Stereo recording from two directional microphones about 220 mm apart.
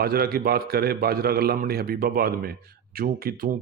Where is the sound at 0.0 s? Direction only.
45° right (ahead or behind).